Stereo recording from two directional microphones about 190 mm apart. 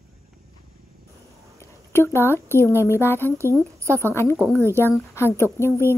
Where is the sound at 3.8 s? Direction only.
15° right (ahead or behind).